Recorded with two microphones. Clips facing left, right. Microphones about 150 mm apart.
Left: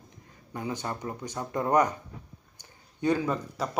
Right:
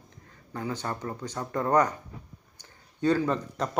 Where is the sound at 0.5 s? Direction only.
15° left (ahead or behind).